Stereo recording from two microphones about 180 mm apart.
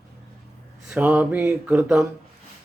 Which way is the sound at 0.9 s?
10° right (ahead or behind).